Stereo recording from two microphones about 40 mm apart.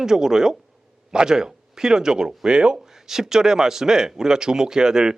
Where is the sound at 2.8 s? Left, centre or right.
Centre.